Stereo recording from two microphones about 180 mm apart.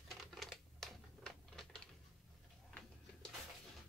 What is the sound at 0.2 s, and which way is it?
Typewriter, centre (ahead or behind).